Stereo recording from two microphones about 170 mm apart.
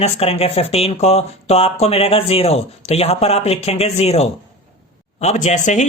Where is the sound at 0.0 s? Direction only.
35° left (ahead or behind).